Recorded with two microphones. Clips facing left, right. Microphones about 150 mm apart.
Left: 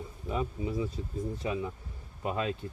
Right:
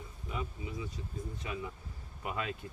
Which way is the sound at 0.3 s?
35° left (ahead or behind).